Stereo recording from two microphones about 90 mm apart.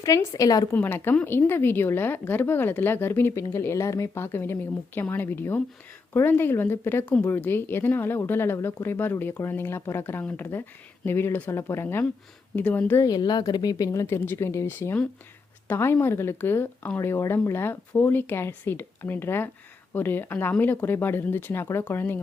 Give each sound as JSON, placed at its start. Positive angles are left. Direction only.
{"t": 0.0, "sound": "speech", "side_deg": 35}
{"t": 0.8, "sound": "speech", "side_deg": 25}
{"t": 7.0, "sound": "speech", "side_deg": 15}
{"t": 7.3, "sound": "speech", "side_deg": 25}
{"t": 13.0, "sound": "speech", "side_deg": 45}